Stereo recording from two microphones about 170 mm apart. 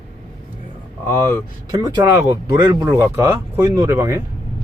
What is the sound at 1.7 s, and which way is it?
Speech, 20° right (ahead or behind).